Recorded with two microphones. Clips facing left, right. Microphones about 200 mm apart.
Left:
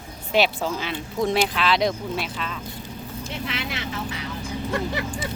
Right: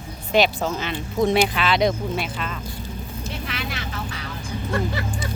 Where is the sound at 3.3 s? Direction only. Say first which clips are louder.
Left 1 dB; 25° left (ahead or behind).